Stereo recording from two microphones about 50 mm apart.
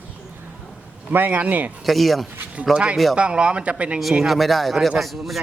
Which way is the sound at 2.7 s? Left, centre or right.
Centre.